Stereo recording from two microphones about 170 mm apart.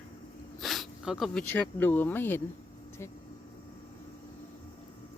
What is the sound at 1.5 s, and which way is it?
Speech, 10° left (ahead or behind).